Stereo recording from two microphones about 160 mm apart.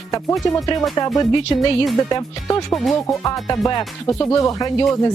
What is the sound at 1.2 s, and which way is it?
Speech, 30° left (ahead or behind).